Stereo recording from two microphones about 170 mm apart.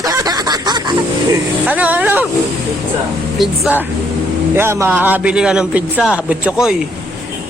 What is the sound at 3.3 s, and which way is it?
Speech, centre (ahead or behind).